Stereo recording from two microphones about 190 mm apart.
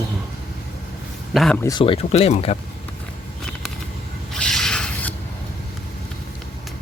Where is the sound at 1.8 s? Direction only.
30° left (ahead or behind).